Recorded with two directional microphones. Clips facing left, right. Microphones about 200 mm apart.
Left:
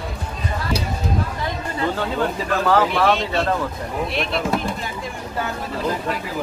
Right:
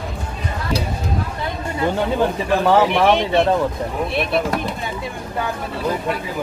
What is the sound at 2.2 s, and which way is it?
Speech, 20° right (ahead or behind).